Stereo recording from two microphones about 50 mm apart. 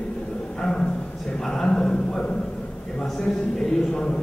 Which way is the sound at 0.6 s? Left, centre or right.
Centre.